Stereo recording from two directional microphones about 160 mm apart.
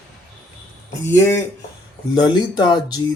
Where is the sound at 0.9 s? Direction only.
20° left (ahead or behind).